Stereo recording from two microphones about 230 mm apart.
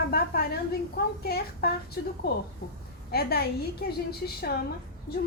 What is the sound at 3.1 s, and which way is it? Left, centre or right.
Speech, left.